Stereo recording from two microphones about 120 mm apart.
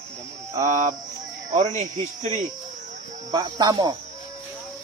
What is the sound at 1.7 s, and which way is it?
Speech, 70° right (ahead or behind).